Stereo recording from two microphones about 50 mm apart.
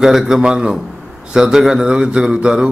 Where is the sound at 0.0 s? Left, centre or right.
Centre.